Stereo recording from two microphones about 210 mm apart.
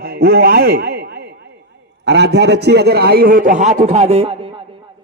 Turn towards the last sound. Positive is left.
turn(degrees=-30)  # may be behind; listen again after turning